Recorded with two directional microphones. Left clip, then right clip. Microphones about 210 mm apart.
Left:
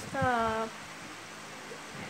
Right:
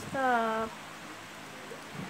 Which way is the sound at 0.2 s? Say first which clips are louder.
Right 1 dB; centre (ahead or behind).